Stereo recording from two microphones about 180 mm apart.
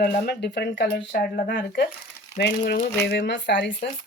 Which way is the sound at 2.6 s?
45° left (ahead or behind).